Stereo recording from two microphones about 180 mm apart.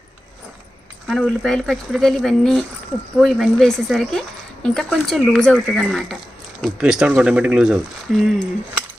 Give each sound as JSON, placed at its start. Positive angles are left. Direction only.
{"t": 1.0, "sound": "speech", "side_deg": 0}